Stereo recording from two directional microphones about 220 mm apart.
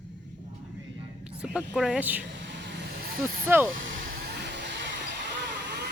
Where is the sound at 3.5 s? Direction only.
10° right (ahead or behind).